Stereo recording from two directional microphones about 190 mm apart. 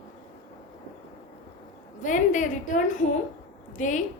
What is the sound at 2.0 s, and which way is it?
A woman's voice, 40° left (ahead or behind).